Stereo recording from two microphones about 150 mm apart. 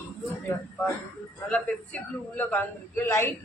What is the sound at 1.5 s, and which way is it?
A man's voice, 10° left (ahead or behind).